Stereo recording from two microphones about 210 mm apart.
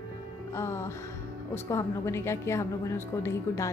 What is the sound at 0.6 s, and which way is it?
A woman's voice, 10° left (ahead or behind).